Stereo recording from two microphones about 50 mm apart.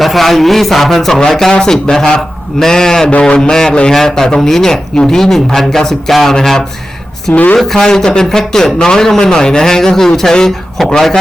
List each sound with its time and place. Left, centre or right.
0.0 s a man's voice: centre
3.1 s a sound: left
3.9 s a man's voice: centre
7.3 s speech: left
7.6 s a man's voice: centre